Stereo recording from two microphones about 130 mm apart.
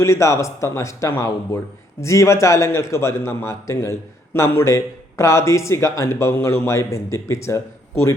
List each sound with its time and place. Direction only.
0.0 s speech: 20° left (ahead or behind)